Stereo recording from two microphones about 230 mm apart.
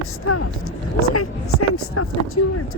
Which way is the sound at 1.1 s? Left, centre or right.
Left.